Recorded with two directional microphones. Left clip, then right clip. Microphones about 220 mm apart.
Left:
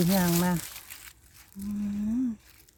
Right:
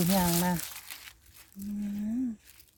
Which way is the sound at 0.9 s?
15° right (ahead or behind).